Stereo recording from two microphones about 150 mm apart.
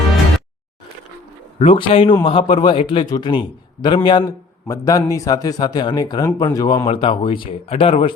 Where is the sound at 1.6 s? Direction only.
35° left (ahead or behind).